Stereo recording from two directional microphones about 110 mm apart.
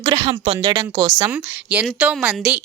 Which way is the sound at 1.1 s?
20° right (ahead or behind).